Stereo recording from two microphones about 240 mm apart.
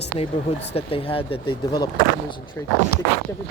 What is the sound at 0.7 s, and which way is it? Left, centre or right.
Speech, left.